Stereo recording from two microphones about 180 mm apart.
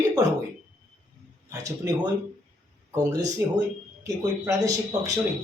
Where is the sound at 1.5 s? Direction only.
20° right (ahead or behind).